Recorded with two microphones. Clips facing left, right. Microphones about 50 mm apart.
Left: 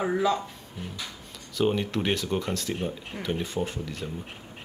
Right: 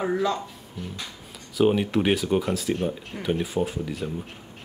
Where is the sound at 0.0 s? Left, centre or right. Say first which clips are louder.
Even; centre.